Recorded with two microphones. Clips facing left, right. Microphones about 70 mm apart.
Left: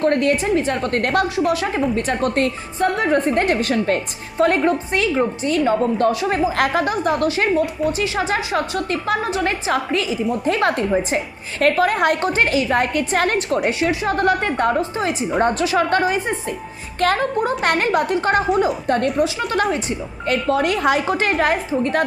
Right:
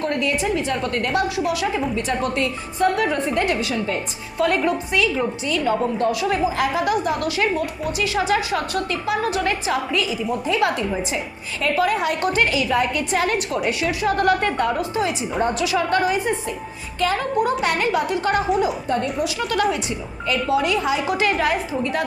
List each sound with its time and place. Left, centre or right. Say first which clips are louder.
0.0 s a woman's voice: left 5 dB; left
2.7 s a woman's voice: left 1 dB; left
4.4 s a woman's voice: left 3 dB; left
12.2 s a woman's voice: left 2 dB; left
13.7 s a woman's voice: left 1 dB; left
17.0 s a woman's voice: left 2 dB; left
18.9 s speech: left 4 dB; left
19.2 s a woman's voice: left 2 dB; left
21.1 s a woman's voice: left 2 dB; left